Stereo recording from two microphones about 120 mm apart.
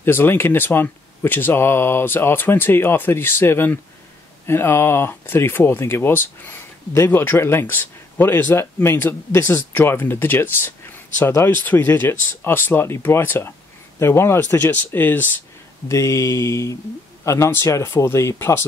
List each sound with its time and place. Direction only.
0.0 s speech: 20° left (ahead or behind)
15.9 s speech: 25° left (ahead or behind)